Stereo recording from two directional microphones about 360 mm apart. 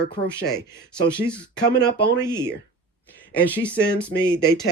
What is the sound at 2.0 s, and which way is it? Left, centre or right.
Speech, left.